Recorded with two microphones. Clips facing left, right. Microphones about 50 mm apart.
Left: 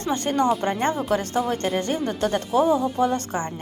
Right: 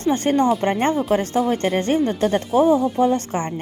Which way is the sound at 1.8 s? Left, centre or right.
Right.